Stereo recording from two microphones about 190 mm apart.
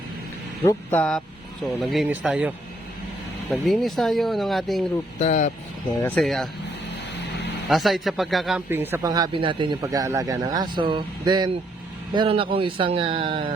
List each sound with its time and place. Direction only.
0.6 s speech: 15° left (ahead or behind); by 2.5 s 5° right (ahead or behind)
3.5 s speech: centre (ahead or behind)
5.2 s speech: 40° left (ahead or behind)
6.0 s speech: 5° left (ahead or behind)
7.7 s speech: centre (ahead or behind)
8.7 s speech: 10° right (ahead or behind); by 13.5 s 25° right (ahead or behind)